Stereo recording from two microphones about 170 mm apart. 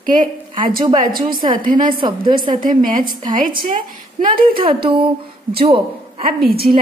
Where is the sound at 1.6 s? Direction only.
55° right (ahead or behind).